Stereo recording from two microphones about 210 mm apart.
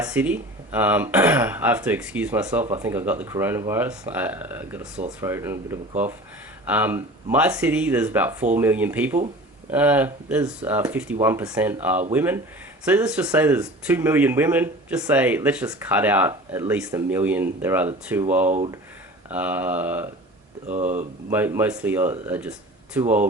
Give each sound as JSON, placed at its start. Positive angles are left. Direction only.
{"t": 0.0, "sound": "speech", "side_deg": -5}
{"t": 18.4, "sound": "speech", "side_deg": -35}
{"t": 19.3, "sound": "speech", "side_deg": -10}
{"t": 20.7, "sound": "speech", "side_deg": -35}
{"t": 21.2, "sound": "speech", "side_deg": -10}